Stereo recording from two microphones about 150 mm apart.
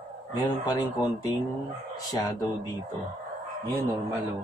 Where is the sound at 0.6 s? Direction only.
25° left (ahead or behind).